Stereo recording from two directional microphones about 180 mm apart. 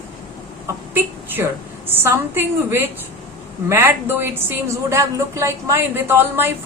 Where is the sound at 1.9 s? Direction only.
10° right (ahead or behind).